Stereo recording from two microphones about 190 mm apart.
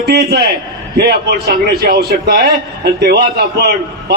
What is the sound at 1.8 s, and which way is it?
A man's voice, 50° right (ahead or behind).